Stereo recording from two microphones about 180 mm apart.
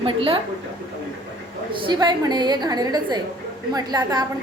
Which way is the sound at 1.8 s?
25° right (ahead or behind).